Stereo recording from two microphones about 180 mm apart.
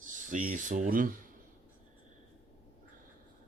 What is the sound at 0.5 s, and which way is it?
Speech, 45° right (ahead or behind).